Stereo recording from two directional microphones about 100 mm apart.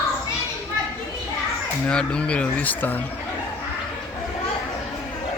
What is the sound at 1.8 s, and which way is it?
Speech, 10° left (ahead or behind).